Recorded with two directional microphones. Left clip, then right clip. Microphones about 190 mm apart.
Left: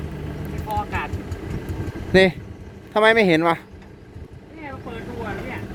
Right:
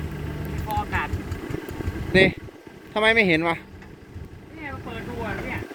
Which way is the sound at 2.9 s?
30° left (ahead or behind).